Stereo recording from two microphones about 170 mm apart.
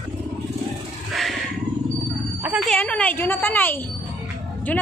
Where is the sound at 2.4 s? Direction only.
5° right (ahead or behind).